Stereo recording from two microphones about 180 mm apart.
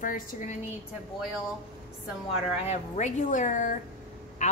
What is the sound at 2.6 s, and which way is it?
Speech, 40° left (ahead or behind).